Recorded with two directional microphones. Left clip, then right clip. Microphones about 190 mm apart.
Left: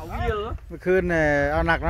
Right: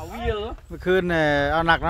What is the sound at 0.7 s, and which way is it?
Speech, 10° right (ahead or behind).